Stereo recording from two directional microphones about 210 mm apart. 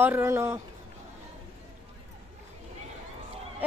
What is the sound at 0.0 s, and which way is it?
Speech, 10° right (ahead or behind).